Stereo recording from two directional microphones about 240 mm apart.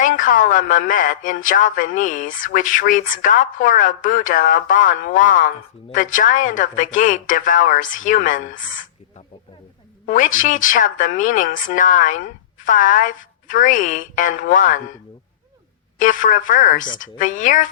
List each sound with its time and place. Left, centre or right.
0.0 s speech: left
16.0 s speech: left